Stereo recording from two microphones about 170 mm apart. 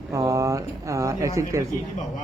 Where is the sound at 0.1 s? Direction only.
20° right (ahead or behind).